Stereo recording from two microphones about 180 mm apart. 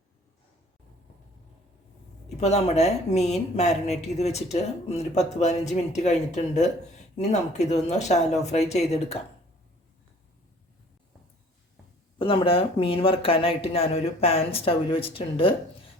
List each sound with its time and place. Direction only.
2.4 s a woman's voice: 40° left (ahead or behind)
12.2 s a woman's voice: 30° left (ahead or behind)